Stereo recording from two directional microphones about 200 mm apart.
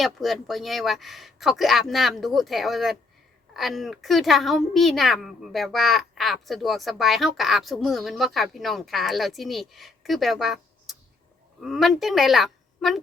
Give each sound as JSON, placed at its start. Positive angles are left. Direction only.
{"t": 0.0, "sound": "a child's voice", "side_deg": 0}